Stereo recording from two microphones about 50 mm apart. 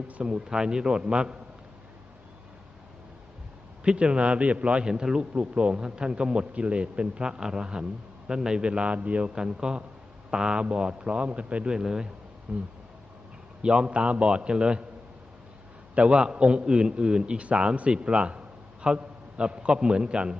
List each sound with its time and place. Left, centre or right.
0.3 s a man's voice: centre
3.8 s a man's voice: right
9.3 s a man's voice: centre
16.0 s a man's voice: right